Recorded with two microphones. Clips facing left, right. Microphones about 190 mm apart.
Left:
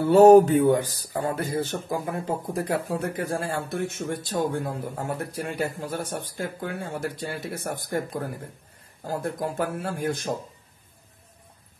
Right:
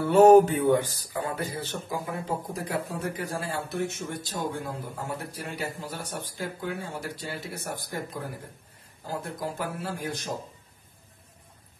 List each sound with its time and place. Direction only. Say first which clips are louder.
0.1 s a man's voice: left 3 dB; 35° left (ahead or behind); by 8.2 s 50° left (ahead or behind)
9.2 s a man's voice: left 7 dB; 50° left (ahead or behind)